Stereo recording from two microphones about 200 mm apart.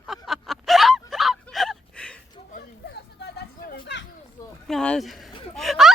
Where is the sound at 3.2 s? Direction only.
50° left (ahead or behind).